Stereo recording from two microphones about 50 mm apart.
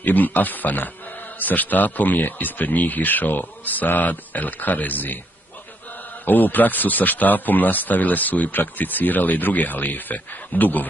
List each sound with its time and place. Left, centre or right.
0.0 s speech: left
6.2 s speech: left